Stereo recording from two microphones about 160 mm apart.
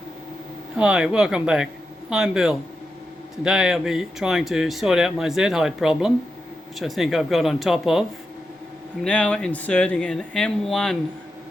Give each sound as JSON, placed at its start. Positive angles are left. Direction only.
{"t": 0.8, "sound": "speech", "side_deg": -5}
{"t": 9.0, "sound": "speech", "side_deg": 5}